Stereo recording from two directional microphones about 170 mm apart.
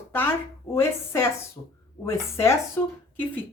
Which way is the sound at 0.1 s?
15° left (ahead or behind).